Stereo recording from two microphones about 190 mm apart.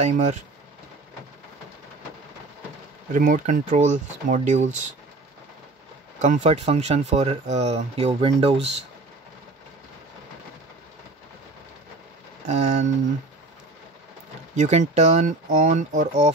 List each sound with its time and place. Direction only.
0.0 s speech: 35° right (ahead or behind)
3.1 s speech: 45° right (ahead or behind)
6.2 s speech: 35° right (ahead or behind)
12.4 s speech: 40° right (ahead or behind)
14.5 s speech: 40° right (ahead or behind)